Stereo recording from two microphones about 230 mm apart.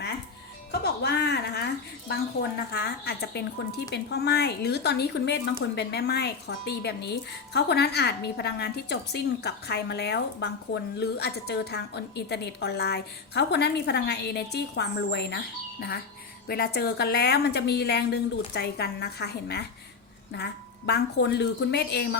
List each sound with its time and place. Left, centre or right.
0.7 s a woman's voice: left
16.5 s a woman's voice: left